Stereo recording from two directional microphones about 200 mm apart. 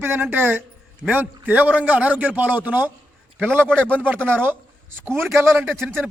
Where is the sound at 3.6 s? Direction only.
5° left (ahead or behind).